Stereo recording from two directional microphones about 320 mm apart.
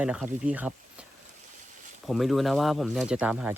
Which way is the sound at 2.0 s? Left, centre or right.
Centre.